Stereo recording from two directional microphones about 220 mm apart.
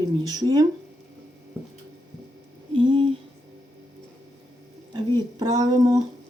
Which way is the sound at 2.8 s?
20° right (ahead or behind).